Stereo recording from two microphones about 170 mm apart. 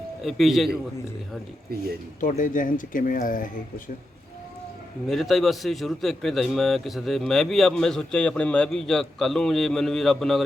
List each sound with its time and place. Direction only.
0.2 s a man's voice: centre (ahead or behind)
2.2 s speech: 50° left (ahead or behind)
5.0 s a man's voice: centre (ahead or behind)